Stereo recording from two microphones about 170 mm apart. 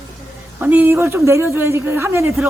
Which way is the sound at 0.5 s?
10° right (ahead or behind).